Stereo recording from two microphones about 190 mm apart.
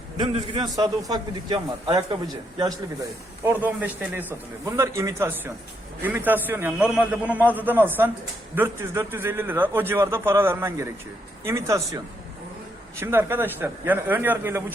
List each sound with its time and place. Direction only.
0.2 s a man's voice: 25° right (ahead or behind)
3.4 s a man's voice: 10° right (ahead or behind)
13.0 s a man's voice: 10° right (ahead or behind)